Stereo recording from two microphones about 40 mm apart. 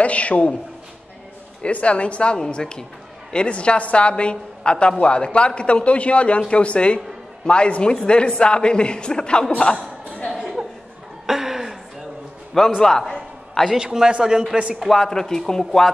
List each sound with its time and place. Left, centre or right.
0.0 s a sound: left
1.7 s a woman's voice: left
2.3 s a woman's voice: centre
10.2 s a sound: centre
11.2 s chuckle: centre
12.8 s a man's voice: centre
13.7 s a man's voice: centre
14.9 s speech: centre